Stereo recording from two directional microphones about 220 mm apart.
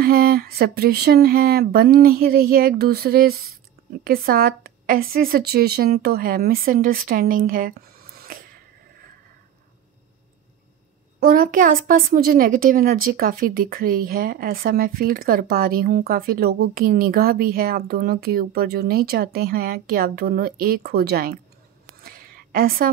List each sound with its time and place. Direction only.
0.0 s a woman's voice: 40° right (ahead or behind)
11.1 s a woman's voice: 40° right (ahead or behind)
22.0 s a sound: 40° right (ahead or behind)